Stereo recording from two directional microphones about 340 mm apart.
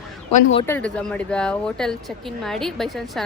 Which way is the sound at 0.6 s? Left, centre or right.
Centre.